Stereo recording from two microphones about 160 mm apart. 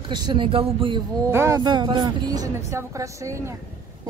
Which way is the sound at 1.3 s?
15° right (ahead or behind).